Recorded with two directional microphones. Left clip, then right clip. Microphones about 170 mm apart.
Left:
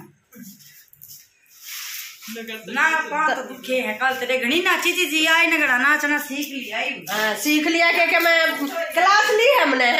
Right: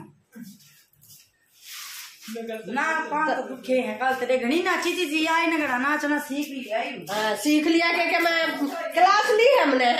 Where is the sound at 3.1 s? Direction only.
10° right (ahead or behind).